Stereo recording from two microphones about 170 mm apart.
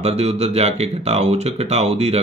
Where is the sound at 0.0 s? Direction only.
40° right (ahead or behind).